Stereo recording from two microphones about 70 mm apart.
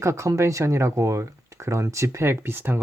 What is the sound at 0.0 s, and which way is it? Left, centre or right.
Speech, right.